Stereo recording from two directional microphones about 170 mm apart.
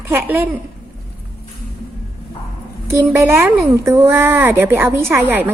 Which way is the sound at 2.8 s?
15° right (ahead or behind).